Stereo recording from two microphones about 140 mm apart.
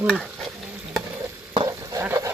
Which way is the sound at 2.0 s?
20° right (ahead or behind).